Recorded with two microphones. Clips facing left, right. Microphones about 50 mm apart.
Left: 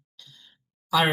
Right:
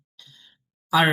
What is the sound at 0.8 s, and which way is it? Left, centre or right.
Speech, centre.